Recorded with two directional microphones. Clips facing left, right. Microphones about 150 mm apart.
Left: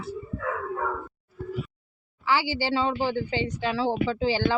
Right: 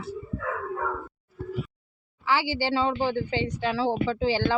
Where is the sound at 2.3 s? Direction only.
5° left (ahead or behind).